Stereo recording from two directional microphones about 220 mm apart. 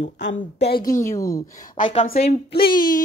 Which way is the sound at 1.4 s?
35° left (ahead or behind).